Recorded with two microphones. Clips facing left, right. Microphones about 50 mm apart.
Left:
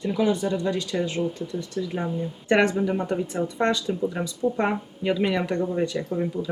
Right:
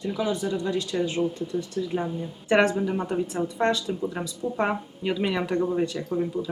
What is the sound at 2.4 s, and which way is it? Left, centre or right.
Speech, centre.